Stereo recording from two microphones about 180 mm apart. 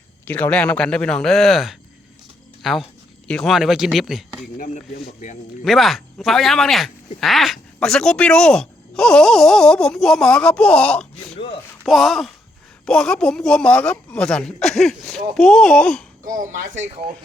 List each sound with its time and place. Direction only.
0.3 s speech: 10° left (ahead or behind)
4.5 s speech: 50° left (ahead or behind)
5.6 s speech: centre (ahead or behind)
16.2 s speech: 50° right (ahead or behind)